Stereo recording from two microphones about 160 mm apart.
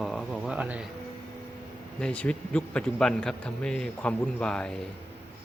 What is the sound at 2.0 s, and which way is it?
A man's voice, 5° left (ahead or behind).